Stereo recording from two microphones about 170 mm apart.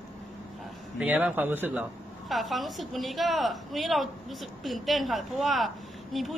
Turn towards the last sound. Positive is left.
turn(degrees=0)  # may be behind; listen again after turning